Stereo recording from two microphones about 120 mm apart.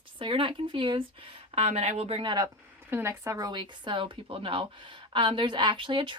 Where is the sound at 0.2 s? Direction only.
45° right (ahead or behind).